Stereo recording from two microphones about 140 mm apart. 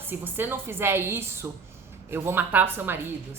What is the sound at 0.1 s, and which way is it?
A woman's voice, 15° right (ahead or behind).